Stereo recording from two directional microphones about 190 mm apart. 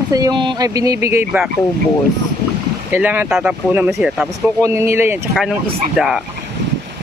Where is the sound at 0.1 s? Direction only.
20° right (ahead or behind).